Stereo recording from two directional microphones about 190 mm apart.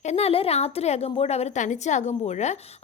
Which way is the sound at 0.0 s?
35° left (ahead or behind).